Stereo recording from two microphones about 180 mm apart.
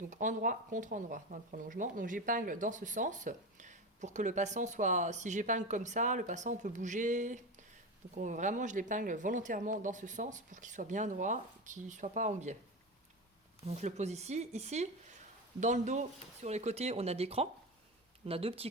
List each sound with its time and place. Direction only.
0.1 s speech: 45° right (ahead or behind)
13.7 s speech: 40° right (ahead or behind)